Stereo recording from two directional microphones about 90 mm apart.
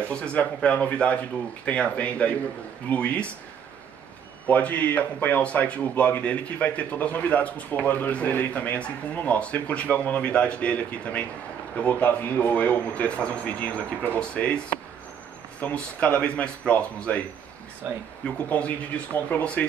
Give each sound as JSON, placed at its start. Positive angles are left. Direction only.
{"t": 0.0, "sound": "speech", "side_deg": 15}
{"t": 4.5, "sound": "speech", "side_deg": 15}
{"t": 15.6, "sound": "speech", "side_deg": 15}
{"t": 18.2, "sound": "speech", "side_deg": 15}